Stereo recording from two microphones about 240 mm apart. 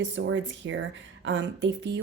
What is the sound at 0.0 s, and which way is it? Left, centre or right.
Speech, right.